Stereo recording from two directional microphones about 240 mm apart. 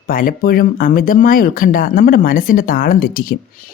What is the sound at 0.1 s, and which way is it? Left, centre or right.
Speech, left.